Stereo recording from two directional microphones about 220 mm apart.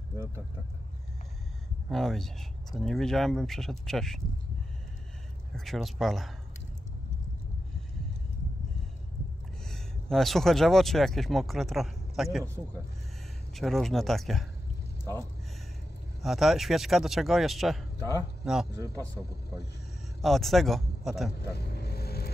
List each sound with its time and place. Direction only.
1.9 s speech: centre (ahead or behind)
5.6 s speech: centre (ahead or behind)
9.7 s speech: centre (ahead or behind)
13.6 s speech: centre (ahead or behind)
16.2 s speech: centre (ahead or behind)
20.2 s speech: centre (ahead or behind)
21.5 s vehicle: 45° left (ahead or behind)